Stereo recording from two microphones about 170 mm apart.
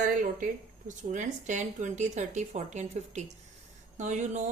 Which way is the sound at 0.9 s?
45° right (ahead or behind).